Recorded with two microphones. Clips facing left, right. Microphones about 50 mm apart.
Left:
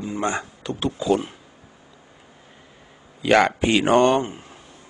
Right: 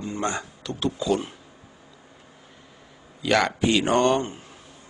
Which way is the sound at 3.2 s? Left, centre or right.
Left.